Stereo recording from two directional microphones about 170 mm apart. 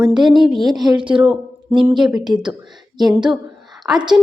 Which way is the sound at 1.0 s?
30° right (ahead or behind).